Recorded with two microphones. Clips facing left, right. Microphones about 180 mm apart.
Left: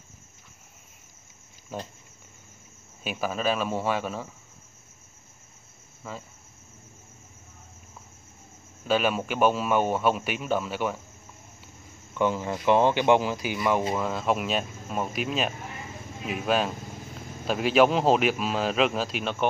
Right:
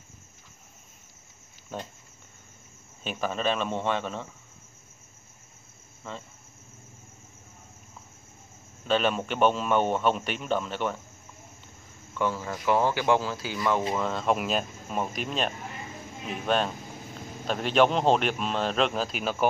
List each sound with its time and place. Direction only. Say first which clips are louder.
1.7 s a man's voice: left 1 dB; 10° left (ahead or behind)
3.0 s a man's voice: left 1 dB; 10° left (ahead or behind)
6.0 s a man's voice: left 1 dB; 5° left (ahead or behind)
8.8 s a man's voice: left 1 dB; 10° left (ahead or behind)
11.6 s speech: left 1 dB; 15° left (ahead or behind); by 19.3 s centre (ahead or behind)